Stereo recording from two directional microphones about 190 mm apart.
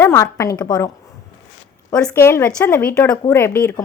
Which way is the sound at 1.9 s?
5° left (ahead or behind).